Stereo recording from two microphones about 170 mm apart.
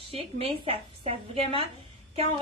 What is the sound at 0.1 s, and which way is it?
A woman's voice, 35° right (ahead or behind).